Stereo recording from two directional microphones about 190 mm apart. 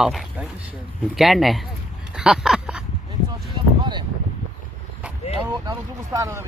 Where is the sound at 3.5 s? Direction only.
25° right (ahead or behind).